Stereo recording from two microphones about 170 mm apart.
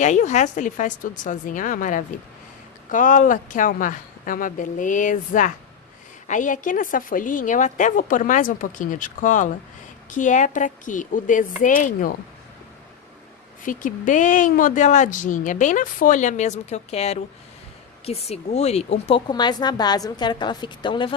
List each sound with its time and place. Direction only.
0.0 s speech: 45° left (ahead or behind)
13.7 s speech: 50° left (ahead or behind)
19.3 s a woman's voice: 25° left (ahead or behind)